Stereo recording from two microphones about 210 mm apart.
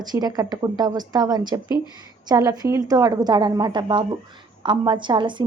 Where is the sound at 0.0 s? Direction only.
20° right (ahead or behind).